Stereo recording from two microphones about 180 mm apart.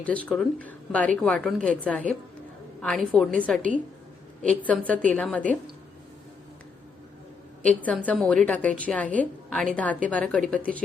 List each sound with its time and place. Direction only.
0.0 s a woman's voice: 5° left (ahead or behind)
7.6 s a woman's voice: 10° left (ahead or behind)